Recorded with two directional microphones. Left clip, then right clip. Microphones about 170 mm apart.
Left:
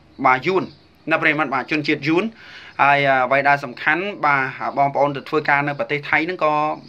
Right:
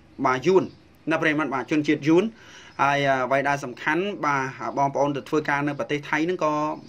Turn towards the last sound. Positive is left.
turn(degrees=-50)  # may be behind; listen again after turning